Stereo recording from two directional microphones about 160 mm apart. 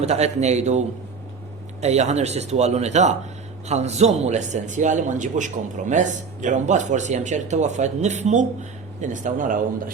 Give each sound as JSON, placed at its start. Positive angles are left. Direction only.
{"t": 0.0, "sound": "a man's voice", "side_deg": -40}